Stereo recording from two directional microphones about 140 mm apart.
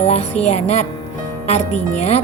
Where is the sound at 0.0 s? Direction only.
50° left (ahead or behind).